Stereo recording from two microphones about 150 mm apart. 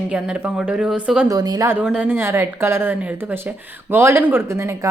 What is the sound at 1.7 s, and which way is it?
A woman's voice, 10° right (ahead or behind).